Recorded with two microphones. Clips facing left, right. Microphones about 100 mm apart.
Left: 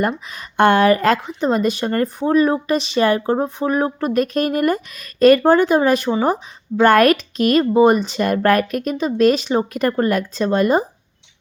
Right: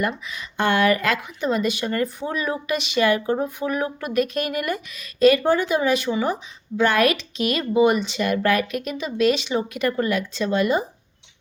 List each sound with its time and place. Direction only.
0.0 s speech: 40° left (ahead or behind)
0.5 s speech: 55° left (ahead or behind)
0.8 s speech: 40° left (ahead or behind)